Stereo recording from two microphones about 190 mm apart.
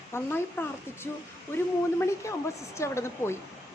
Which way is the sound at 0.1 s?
10° left (ahead or behind).